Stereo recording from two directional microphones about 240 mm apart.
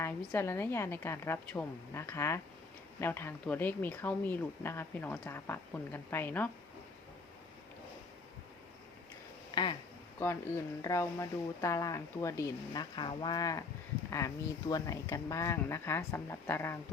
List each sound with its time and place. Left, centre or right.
0.0 s speech: centre
9.5 s a sound: centre
10.8 s speech: centre